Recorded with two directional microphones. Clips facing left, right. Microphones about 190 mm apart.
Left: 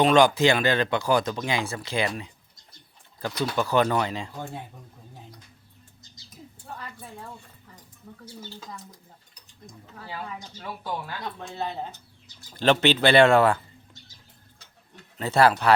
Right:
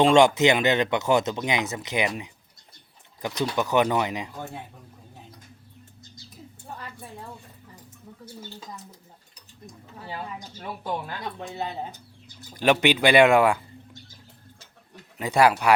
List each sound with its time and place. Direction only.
0.0 s speech: 25° right (ahead or behind)
10.0 s speech: 20° right (ahead or behind)
15.2 s speech: 15° right (ahead or behind)